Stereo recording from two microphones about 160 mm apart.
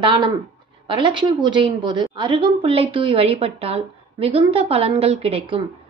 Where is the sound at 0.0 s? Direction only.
30° right (ahead or behind).